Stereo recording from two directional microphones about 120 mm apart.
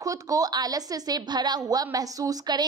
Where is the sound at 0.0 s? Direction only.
30° right (ahead or behind).